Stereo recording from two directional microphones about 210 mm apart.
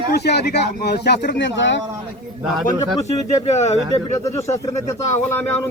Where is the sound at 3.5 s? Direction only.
30° left (ahead or behind).